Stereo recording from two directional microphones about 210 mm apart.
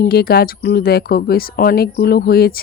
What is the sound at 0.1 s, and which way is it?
Speech, 50° left (ahead or behind).